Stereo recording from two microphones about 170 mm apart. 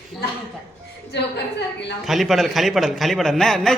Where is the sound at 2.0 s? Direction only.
Centre (ahead or behind).